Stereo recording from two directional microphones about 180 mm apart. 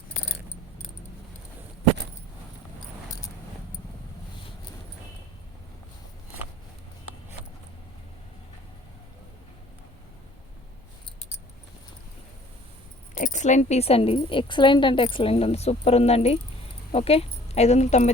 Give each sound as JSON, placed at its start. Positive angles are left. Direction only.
{"t": 13.1, "sound": "a woman's voice", "side_deg": 45}